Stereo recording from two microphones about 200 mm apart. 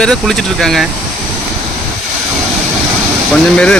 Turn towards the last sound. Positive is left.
turn(degrees=5)  # may be behind; listen again after turning